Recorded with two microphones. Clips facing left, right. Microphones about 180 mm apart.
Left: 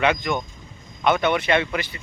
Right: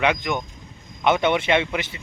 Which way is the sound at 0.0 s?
15° right (ahead or behind).